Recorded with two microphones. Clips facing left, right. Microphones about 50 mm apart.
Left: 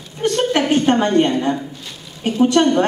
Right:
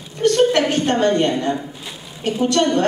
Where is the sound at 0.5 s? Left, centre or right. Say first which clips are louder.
Left 2 dB; centre.